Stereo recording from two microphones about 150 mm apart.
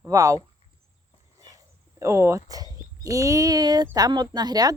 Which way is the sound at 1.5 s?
20° right (ahead or behind).